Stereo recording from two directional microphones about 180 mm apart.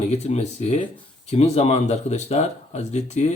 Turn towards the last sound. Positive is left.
turn(degrees=40)  # may be behind; listen again after turning